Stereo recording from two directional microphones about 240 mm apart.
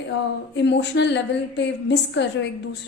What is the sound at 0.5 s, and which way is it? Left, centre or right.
A woman's voice, left.